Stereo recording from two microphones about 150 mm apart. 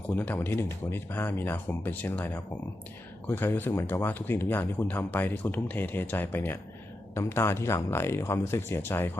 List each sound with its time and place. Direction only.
0.2 s speech: 15° left (ahead or behind)